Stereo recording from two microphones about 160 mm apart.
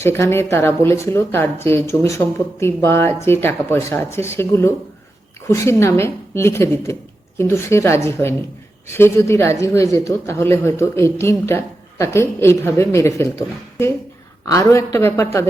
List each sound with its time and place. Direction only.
0.0 s speech: 15° left (ahead or behind)
14.4 s speech: 20° left (ahead or behind)